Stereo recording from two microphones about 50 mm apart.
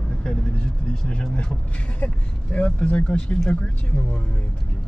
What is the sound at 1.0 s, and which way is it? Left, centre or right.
Speech, centre.